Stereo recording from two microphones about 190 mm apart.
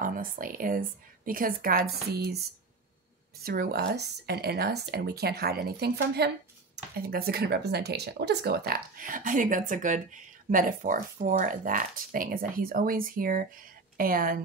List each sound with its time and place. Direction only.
0.0 s speech: 45° right (ahead or behind)
3.4 s speech: 55° right (ahead or behind)